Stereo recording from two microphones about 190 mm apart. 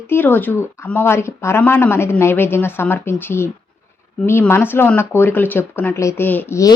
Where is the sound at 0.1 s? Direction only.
10° left (ahead or behind).